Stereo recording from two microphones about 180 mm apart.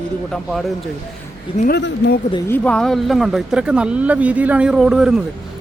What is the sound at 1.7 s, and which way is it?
Speech, 65° left (ahead or behind).